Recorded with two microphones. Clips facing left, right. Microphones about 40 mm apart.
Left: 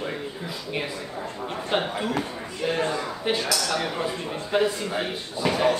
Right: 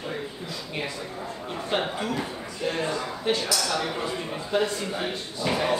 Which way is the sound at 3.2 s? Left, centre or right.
Centre.